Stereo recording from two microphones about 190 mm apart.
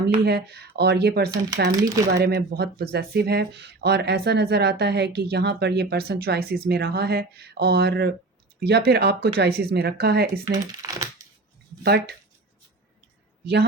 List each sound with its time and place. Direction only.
0.3 s speech: 60° right (ahead or behind)
1.8 s speech: 15° right (ahead or behind)
2.1 s speech: 60° right (ahead or behind)
10.4 s speech: 20° right (ahead or behind)
11.8 s speech: 55° right (ahead or behind)
13.4 s a man's voice: 55° right (ahead or behind)